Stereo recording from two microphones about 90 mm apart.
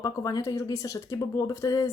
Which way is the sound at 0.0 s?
45° left (ahead or behind).